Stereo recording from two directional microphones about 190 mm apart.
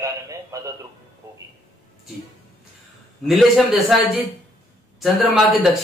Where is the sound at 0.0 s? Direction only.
15° right (ahead or behind).